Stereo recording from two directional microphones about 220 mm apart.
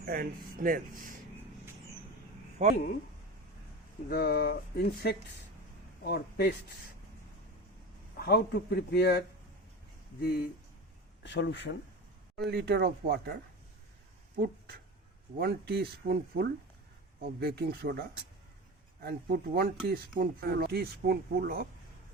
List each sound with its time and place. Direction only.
0.0 s speech: 40° right (ahead or behind)
2.6 s speech: 30° right (ahead or behind)
4.1 s a man's voice: 45° left (ahead or behind)
8.1 s a man's voice: 45° left (ahead or behind)
11.2 s a man's voice: 55° left (ahead or behind)
12.4 s speech: 45° right (ahead or behind)
14.3 s speech: 45° right (ahead or behind)
19.0 s speech: 45° right (ahead or behind)